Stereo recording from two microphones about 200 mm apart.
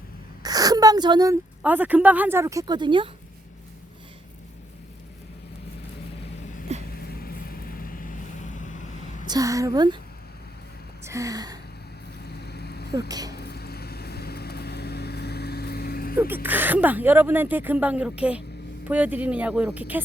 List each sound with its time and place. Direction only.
0.4 s a woman's voice: 20° right (ahead or behind)
6.7 s a sound: 35° right (ahead or behind)
7.2 s vehicle: 50° left (ahead or behind)
9.2 s a woman's voice: 20° right (ahead or behind)
11.0 s gasp: 15° right (ahead or behind)
12.3 s vehicle: 55° left (ahead or behind)
13.1 s a woman's voice: 20° right (ahead or behind)
13.3 s vehicle: 55° left (ahead or behind)
16.1 s a woman's voice: 10° right (ahead or behind)